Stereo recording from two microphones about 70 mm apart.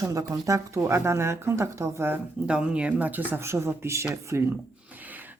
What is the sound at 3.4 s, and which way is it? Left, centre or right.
Speech, right.